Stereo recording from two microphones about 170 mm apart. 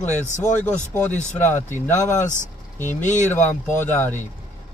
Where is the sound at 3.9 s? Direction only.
10° left (ahead or behind).